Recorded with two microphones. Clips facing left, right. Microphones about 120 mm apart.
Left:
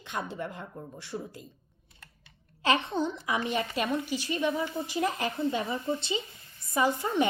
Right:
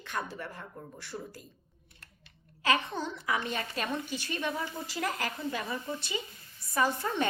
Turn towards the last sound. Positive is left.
turn(degrees=15)  # may be behind; listen again after turning